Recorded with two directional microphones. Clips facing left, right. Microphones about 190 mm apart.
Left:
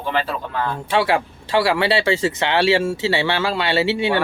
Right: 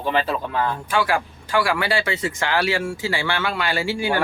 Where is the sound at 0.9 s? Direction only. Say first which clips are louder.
Left 3 dB; 25° left (ahead or behind).